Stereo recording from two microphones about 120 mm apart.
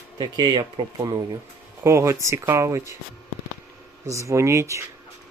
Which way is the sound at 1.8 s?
25° right (ahead or behind).